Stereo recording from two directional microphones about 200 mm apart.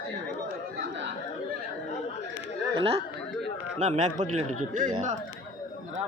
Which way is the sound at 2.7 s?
30° right (ahead or behind).